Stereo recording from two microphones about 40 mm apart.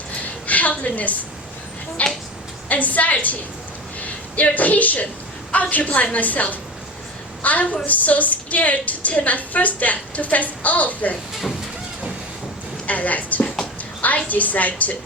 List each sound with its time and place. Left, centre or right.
0.4 s a sound: left
2.0 s a woman's voice: left
12.9 s a woman's voice: left